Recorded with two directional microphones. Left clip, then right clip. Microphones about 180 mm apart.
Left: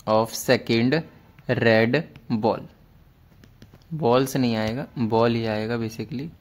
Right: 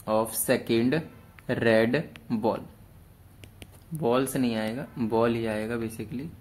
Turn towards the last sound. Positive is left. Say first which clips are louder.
# left 4 dB
turn(degrees=45)  # may be behind; listen again after turning